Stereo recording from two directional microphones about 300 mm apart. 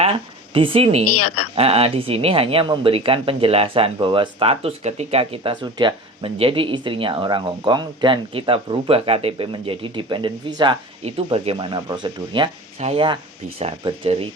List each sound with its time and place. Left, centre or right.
0.0 s speech: centre
1.0 s a woman's voice: left
1.5 s speech: centre